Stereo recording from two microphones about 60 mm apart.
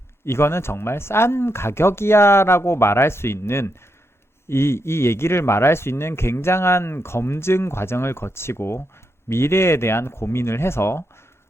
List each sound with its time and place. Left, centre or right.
0.3 s speech: left